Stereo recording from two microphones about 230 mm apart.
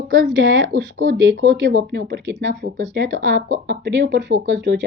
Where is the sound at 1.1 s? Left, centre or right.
Right.